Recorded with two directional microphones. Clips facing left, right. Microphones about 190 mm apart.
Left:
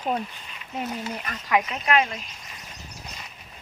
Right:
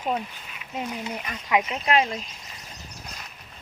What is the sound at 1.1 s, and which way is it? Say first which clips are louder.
Speech: even; 15° right (ahead or behind).